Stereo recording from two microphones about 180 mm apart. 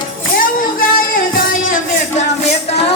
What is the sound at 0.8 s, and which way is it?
Music, 55° left (ahead or behind).